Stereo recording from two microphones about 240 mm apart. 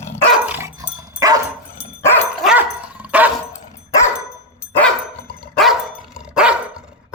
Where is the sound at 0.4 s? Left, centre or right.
Centre.